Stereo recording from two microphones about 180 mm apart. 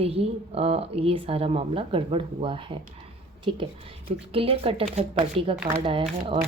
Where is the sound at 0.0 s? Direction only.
35° right (ahead or behind).